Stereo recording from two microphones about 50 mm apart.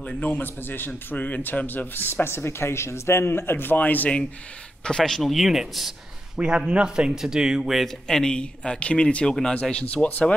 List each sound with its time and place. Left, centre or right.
0.0 s a man's voice: left
4.8 s a man's voice: centre
6.3 s a man's voice: centre
7.8 s speech: centre